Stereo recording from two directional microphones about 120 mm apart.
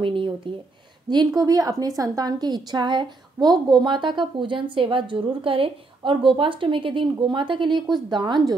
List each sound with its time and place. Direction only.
0.0 s speech: 45° right (ahead or behind)
1.1 s a woman's voice: 35° right (ahead or behind)